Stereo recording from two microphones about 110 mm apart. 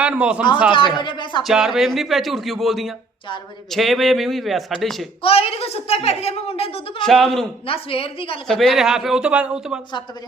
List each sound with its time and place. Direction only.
0.0 s speech: 10° right (ahead or behind)
1.0 s speech: 45° left (ahead or behind)
1.5 s speech: 5° right (ahead or behind)
5.2 s a woman's voice: 65° left (ahead or behind)
7.0 s speech: centre (ahead or behind)
7.7 s a woman's voice: 55° left (ahead or behind)
8.4 s speech: centre (ahead or behind)